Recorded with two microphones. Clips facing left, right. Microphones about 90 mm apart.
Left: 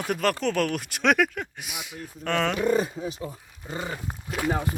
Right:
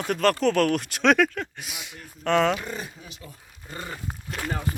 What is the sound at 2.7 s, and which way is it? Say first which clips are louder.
Speech: left 12 dB; 45° left (ahead or behind).